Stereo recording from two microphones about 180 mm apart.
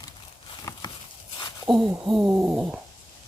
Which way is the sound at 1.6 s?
5° right (ahead or behind).